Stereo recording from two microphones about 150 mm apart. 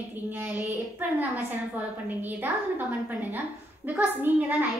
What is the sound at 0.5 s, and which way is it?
Speech, 15° right (ahead or behind).